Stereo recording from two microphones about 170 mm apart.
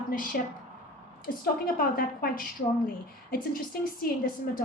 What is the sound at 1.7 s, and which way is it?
A woman's voice, 55° left (ahead or behind).